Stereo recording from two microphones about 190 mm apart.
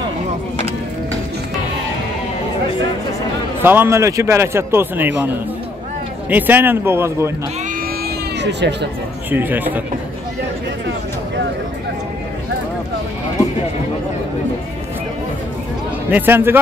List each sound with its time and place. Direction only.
3.6 s speech: 10° right (ahead or behind)
6.3 s speech: 10° right (ahead or behind)
8.4 s speech: 65° right (ahead or behind)
9.3 s speech: 10° right (ahead or behind)
16.1 s speech: 10° right (ahead or behind)